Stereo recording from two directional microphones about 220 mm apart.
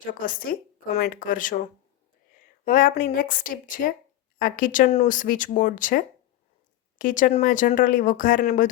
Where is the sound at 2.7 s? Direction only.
40° left (ahead or behind).